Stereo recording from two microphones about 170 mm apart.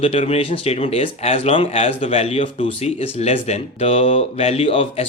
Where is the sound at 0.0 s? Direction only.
35° left (ahead or behind).